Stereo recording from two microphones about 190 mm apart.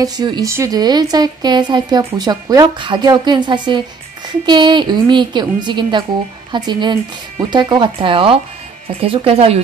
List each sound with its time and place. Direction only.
0.0 s speech: 20° right (ahead or behind)